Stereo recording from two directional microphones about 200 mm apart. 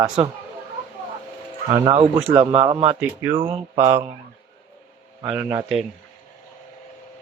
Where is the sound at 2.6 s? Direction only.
25° right (ahead or behind).